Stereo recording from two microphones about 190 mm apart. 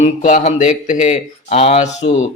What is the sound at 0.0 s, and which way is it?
Speech, 40° left (ahead or behind).